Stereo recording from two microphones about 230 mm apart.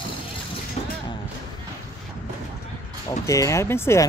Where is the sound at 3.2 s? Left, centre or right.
Centre.